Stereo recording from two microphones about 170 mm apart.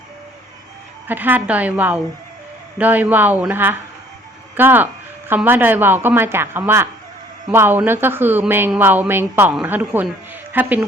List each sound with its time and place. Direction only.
1.0 s speech: 10° right (ahead or behind)